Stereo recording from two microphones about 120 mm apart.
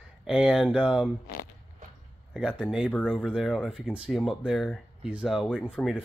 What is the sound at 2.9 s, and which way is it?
Speech, 10° left (ahead or behind).